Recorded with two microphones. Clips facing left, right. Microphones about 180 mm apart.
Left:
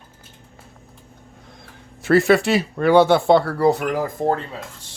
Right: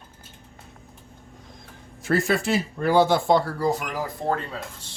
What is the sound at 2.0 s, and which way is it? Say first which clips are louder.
Speech: left 8 dB; 75° left (ahead or behind).